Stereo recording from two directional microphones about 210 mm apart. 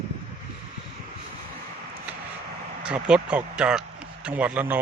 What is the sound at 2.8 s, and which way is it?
Speech, 5° right (ahead or behind).